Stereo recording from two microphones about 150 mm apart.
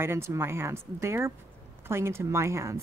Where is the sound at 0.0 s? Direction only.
15° right (ahead or behind).